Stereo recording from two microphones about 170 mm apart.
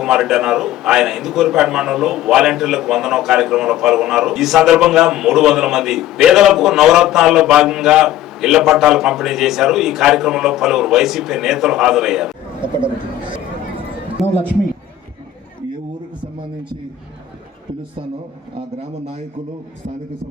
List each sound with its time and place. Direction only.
0.0 s a man's voice: 5° right (ahead or behind)
14.2 s a man's voice: centre (ahead or behind)
18.5 s a man's voice: 35° right (ahead or behind)